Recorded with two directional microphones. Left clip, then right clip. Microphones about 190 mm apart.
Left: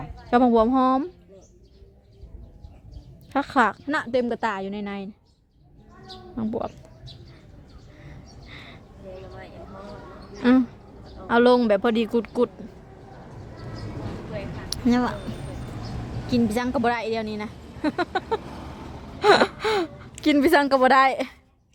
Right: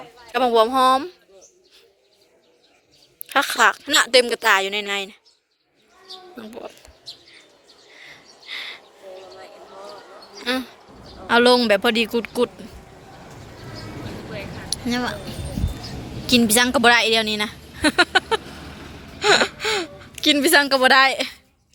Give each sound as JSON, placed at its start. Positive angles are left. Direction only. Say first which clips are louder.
{"t": 0.3, "sound": "speech", "louder": "right 2 dB", "side_deg": 5}
{"t": 3.2, "sound": "speech", "louder": "right 4 dB", "side_deg": 0}
{"t": 3.9, "sound": "a woman's voice", "louder": "right 8 dB", "side_deg": -15}
{"t": 6.4, "sound": "speech", "louder": "left 10 dB", "side_deg": 10}
{"t": 7.9, "sound": "a sound", "louder": "right 6 dB", "side_deg": 5}
{"t": 10.4, "sound": "speech", "louder": "left 4 dB", "side_deg": 10}
{"t": 14.7, "sound": "a sound", "louder": "left 1 dB", "side_deg": 20}
{"t": 16.2, "sound": "a woman's voice", "louder": "right 8 dB", "side_deg": 0}
{"t": 18.4, "sound": "a sound", "louder": "right 1 dB", "side_deg": 60}
{"t": 19.2, "sound": "gasp", "louder": "even", "side_deg": 20}
{"t": 20.2, "sound": "speech", "louder": "right 3 dB", "side_deg": 15}